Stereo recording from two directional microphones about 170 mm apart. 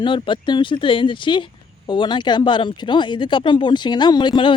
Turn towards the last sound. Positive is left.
turn(degrees=30)  # may be behind; listen again after turning